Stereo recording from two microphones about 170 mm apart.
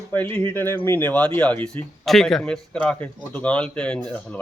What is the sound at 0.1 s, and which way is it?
A man's voice, 10° left (ahead or behind).